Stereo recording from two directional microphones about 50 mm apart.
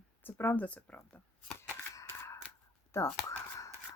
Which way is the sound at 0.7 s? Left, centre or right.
Left.